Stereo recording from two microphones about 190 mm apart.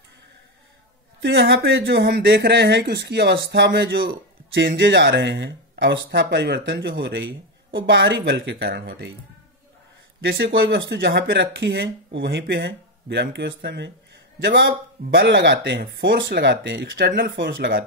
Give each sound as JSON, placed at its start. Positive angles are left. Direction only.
{"t": 1.2, "sound": "speech", "side_deg": -60}
{"t": 7.8, "sound": "speech", "side_deg": -65}
{"t": 10.2, "sound": "speech", "side_deg": -70}
{"t": 10.5, "sound": "speech", "side_deg": -60}